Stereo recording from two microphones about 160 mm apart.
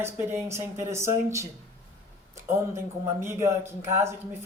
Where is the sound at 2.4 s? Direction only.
15° right (ahead or behind).